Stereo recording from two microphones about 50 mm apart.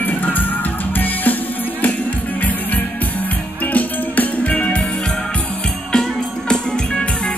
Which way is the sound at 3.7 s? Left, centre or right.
Left.